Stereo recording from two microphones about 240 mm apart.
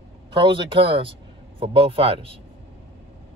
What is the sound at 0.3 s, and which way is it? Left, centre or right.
Speech, centre.